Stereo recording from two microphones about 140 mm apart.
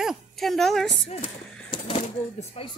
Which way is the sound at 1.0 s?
50° left (ahead or behind).